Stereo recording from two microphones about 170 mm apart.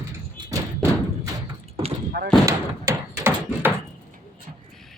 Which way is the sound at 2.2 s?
70° right (ahead or behind).